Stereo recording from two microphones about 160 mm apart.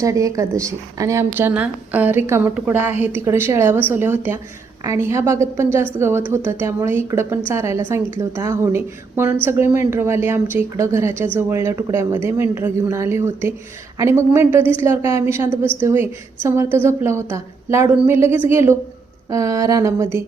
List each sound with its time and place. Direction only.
0.0 s a woman's voice: 20° right (ahead or behind)